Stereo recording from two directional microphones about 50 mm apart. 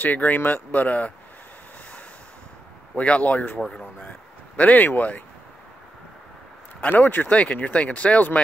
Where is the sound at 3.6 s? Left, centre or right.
Centre.